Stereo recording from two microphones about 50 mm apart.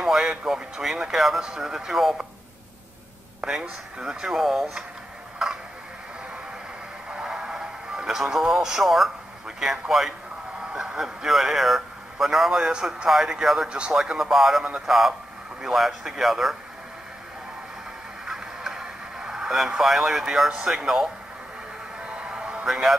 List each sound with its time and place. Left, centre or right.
0.0 s speech: centre
3.3 s a sound: centre
4.0 s speech: centre
7.1 s music: centre
9.6 s a man's voice: centre
13.7 s speech: centre
13.9 s speech: centre
18.2 s radio: centre
20.5 s speech: centre
22.0 s music: right
22.7 s speech: centre